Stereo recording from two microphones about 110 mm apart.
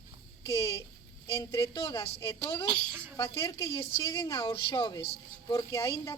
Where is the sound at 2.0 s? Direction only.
30° left (ahead or behind).